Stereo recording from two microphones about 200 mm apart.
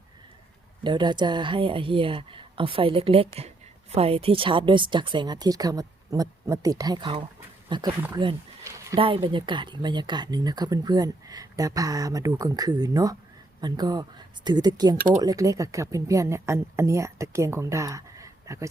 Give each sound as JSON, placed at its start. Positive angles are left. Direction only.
{"t": 0.9, "sound": "speech", "side_deg": -20}
{"t": 9.0, "sound": "speech", "side_deg": -25}